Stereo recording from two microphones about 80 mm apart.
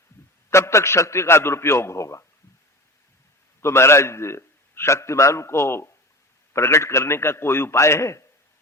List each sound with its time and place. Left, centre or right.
0.5 s a man's voice: left
3.6 s a man's voice: left